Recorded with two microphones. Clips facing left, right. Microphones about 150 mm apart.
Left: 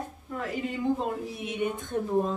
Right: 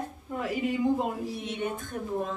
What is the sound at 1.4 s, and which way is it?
Speech, 10° left (ahead or behind).